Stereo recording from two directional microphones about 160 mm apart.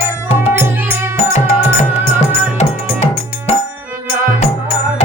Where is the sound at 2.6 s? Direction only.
45° left (ahead or behind).